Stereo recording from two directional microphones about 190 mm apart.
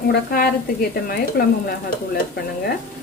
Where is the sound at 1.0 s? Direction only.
55° left (ahead or behind).